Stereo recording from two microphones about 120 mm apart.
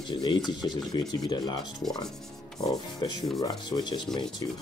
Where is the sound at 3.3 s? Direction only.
35° left (ahead or behind).